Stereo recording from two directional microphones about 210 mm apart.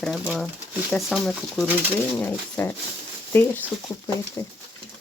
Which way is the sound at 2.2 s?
10° left (ahead or behind).